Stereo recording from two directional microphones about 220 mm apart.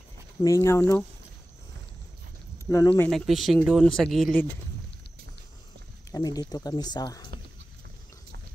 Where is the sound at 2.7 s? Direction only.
15° left (ahead or behind).